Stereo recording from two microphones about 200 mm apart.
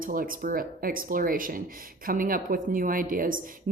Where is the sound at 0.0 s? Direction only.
45° right (ahead or behind).